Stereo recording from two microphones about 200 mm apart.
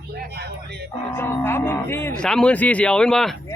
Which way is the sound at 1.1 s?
10° left (ahead or behind).